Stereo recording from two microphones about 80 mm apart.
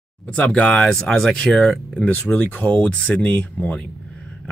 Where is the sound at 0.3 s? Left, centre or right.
Centre.